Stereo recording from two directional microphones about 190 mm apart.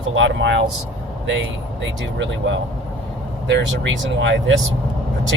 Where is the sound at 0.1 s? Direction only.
75° right (ahead or behind).